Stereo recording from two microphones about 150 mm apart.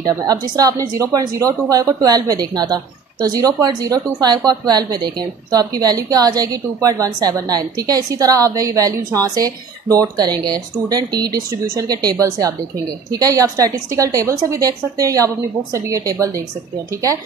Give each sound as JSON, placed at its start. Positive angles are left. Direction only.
{"t": 0.0, "sound": "speech", "side_deg": -25}